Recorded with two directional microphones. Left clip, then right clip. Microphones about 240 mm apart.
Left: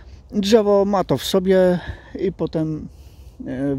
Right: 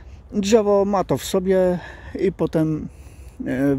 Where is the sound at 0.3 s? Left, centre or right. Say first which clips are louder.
Left 1 dB; centre.